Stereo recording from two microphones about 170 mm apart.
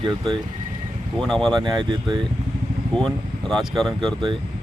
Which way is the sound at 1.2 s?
5° left (ahead or behind).